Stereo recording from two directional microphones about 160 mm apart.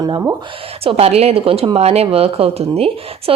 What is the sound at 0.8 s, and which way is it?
A woman's voice, 40° right (ahead or behind).